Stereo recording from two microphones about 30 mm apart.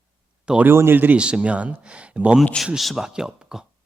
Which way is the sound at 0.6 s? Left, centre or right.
Right.